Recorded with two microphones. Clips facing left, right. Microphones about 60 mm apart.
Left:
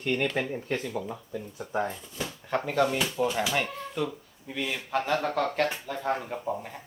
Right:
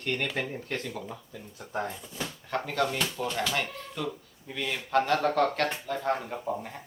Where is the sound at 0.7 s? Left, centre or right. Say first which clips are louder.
Left 5 dB; centre.